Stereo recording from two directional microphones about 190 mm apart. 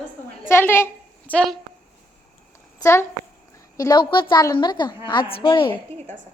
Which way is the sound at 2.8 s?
15° left (ahead or behind).